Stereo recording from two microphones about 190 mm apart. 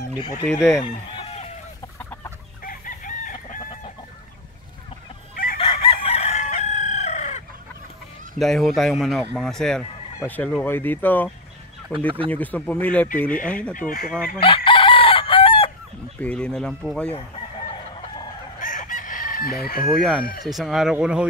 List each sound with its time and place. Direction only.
0.5 s speech: 5° left (ahead or behind)
1.1 s chicken: 30° left (ahead or behind)
2.0 s chicken: 10° left (ahead or behind)
2.6 s chicken: 45° left (ahead or behind)
5.3 s chicken: 50° left (ahead or behind)
5.6 s chicken: 30° left (ahead or behind)
8.4 s speech: centre (ahead or behind)
13.7 s speech: 45° left (ahead or behind)
14.4 s chicken: 25° left (ahead or behind)
16.2 s speech: 5° left (ahead or behind)
18.6 s chicken: 45° left (ahead or behind)
19.9 s speech: centre (ahead or behind)